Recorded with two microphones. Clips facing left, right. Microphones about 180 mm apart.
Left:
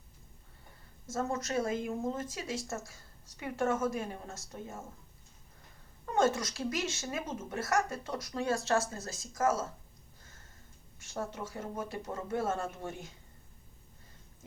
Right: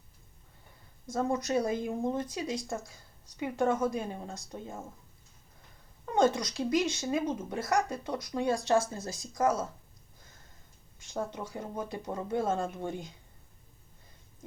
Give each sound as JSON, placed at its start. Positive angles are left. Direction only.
{"t": 1.1, "sound": "speech", "side_deg": -15}
{"t": 6.1, "sound": "speech", "side_deg": -15}
{"t": 11.1, "sound": "speech", "side_deg": -15}